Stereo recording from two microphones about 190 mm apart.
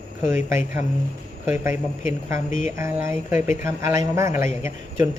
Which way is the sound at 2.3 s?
40° left (ahead or behind).